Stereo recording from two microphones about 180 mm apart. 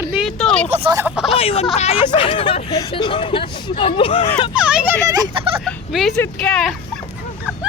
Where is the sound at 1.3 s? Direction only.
35° left (ahead or behind).